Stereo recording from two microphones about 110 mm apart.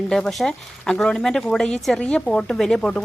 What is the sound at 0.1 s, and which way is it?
Speech, 5° left (ahead or behind).